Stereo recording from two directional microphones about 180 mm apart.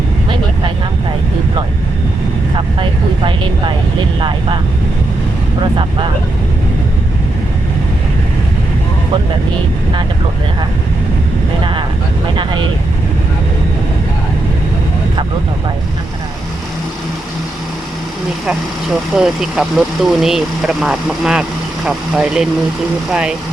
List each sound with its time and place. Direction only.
4.2 s speech: 25° right (ahead or behind)
11.6 s speech: 25° right (ahead or behind)
19.1 s speech: centre (ahead or behind)